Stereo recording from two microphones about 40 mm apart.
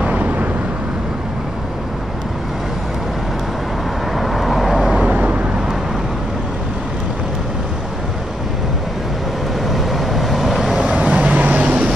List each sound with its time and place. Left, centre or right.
0.2 s vehicle: right
4.2 s vehicle: centre
5.0 s vehicle: right
9.7 s vehicle: centre
10.8 s vehicle: right